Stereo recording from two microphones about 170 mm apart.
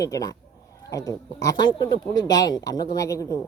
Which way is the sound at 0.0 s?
20° left (ahead or behind).